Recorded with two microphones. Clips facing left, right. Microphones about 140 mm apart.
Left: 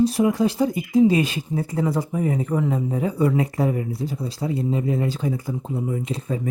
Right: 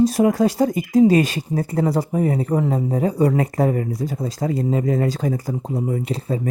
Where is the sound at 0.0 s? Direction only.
40° right (ahead or behind).